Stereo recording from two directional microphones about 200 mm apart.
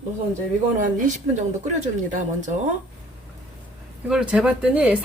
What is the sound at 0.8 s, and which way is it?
Speech, 40° right (ahead or behind).